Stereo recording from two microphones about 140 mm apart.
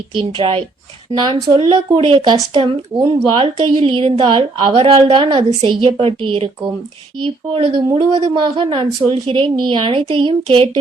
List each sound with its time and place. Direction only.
0.2 s a woman's voice: 35° right (ahead or behind)